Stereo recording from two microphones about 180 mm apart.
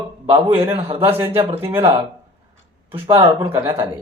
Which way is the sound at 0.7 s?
35° right (ahead or behind).